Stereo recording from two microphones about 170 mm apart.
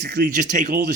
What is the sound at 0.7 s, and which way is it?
Speech, 65° right (ahead or behind).